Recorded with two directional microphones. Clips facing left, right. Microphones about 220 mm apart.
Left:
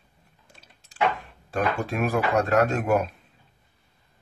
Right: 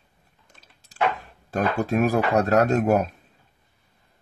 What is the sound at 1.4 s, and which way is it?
Speech, 40° right (ahead or behind).